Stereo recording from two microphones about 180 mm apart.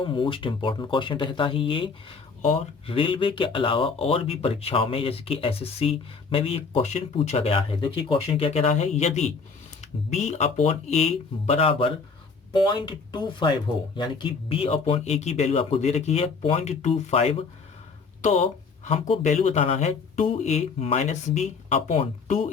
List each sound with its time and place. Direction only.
0.0 s speech: 25° left (ahead or behind)